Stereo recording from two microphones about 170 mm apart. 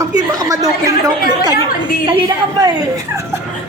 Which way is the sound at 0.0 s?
20° right (ahead or behind).